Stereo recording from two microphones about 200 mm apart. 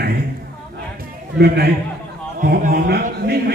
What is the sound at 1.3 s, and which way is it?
Speech, 55° right (ahead or behind).